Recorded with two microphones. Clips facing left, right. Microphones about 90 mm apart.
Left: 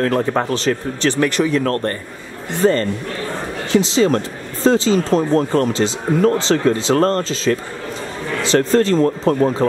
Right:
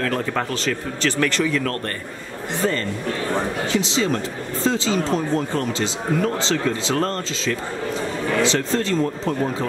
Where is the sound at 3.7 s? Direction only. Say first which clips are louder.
Left 9 dB; 45° left (ahead or behind).